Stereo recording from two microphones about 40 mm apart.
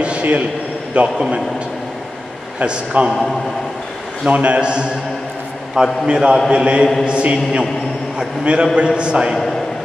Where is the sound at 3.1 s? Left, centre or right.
Centre.